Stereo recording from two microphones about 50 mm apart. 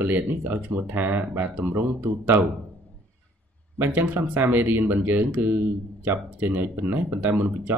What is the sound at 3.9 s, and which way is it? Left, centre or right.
Speech, right.